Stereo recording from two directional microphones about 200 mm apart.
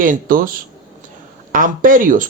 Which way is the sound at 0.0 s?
45° right (ahead or behind).